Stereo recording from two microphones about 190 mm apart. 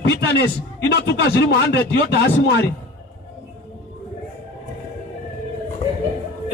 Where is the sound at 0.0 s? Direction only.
60° left (ahead or behind).